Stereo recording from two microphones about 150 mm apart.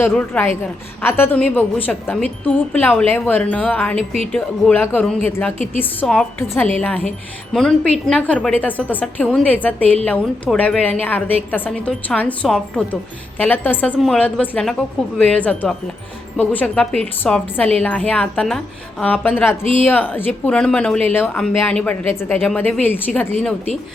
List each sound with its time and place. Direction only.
0.0 s speech: 15° left (ahead or behind)
3.9 s a woman's voice: 45° right (ahead or behind)
4.3 s speech: 10° left (ahead or behind)